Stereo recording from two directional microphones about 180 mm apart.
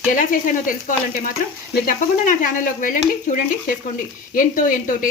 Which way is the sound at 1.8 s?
50° left (ahead or behind).